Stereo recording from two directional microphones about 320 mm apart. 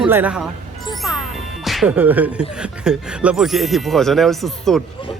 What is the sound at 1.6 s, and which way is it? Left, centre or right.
Speech, centre.